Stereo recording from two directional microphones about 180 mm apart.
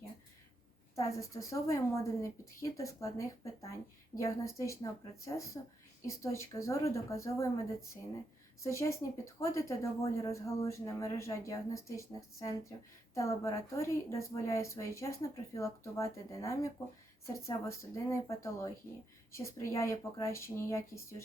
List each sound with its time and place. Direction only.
0.9 s a woman's voice: 15° left (ahead or behind)